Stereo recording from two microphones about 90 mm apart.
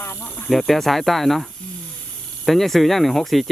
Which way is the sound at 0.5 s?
Centre (ahead or behind).